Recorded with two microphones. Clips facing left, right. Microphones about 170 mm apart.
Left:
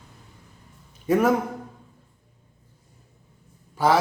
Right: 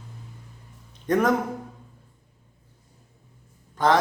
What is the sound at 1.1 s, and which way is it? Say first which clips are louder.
Speech: left 1 dB; 10° left (ahead or behind).